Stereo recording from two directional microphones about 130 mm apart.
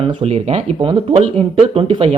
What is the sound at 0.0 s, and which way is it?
Speech, 50° right (ahead or behind).